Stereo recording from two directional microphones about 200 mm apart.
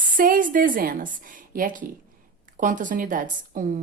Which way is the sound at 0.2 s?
45° right (ahead or behind).